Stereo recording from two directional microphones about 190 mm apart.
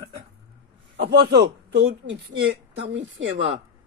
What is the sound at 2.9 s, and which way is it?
Speech, 75° right (ahead or behind).